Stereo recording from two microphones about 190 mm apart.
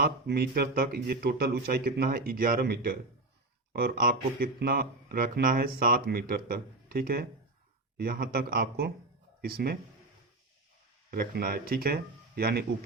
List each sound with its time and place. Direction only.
0.0 s speech: 55° right (ahead or behind)
11.1 s speech: 50° right (ahead or behind)